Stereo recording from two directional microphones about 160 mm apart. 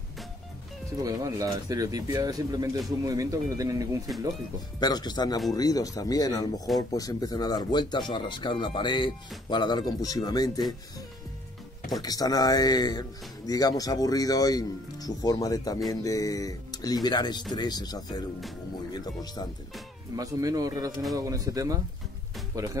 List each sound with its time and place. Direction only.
1.0 s speech: 20° right (ahead or behind)
4.7 s speech: 25° left (ahead or behind)
12.0 s speech: 25° left (ahead or behind)
20.2 s speech: 20° right (ahead or behind)